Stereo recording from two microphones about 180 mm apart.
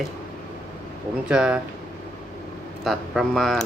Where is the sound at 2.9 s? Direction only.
Centre (ahead or behind).